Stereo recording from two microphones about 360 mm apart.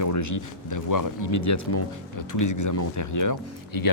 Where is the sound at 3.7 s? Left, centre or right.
Left.